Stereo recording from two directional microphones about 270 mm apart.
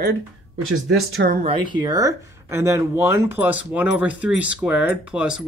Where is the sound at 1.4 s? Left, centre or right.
Right.